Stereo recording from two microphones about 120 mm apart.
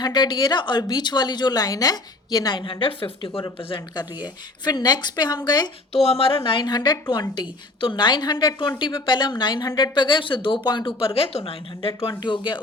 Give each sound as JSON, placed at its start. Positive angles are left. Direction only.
{"t": 0.0, "sound": "a woman's voice", "side_deg": 35}
{"t": 5.9, "sound": "a woman's voice", "side_deg": 55}